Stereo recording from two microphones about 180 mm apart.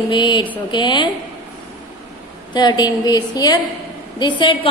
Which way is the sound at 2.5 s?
25° left (ahead or behind).